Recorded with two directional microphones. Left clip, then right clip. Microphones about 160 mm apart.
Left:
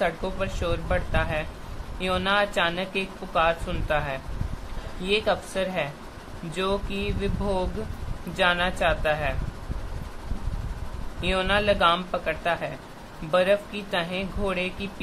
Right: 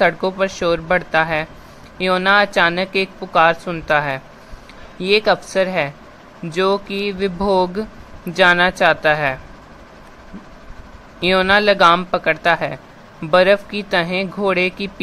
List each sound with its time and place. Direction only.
0.0 s speech: 60° right (ahead or behind)
11.1 s speech: 60° right (ahead or behind)